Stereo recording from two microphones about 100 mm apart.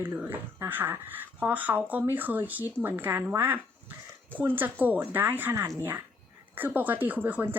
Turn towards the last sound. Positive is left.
turn(degrees=-20)  # may be behind; listen again after turning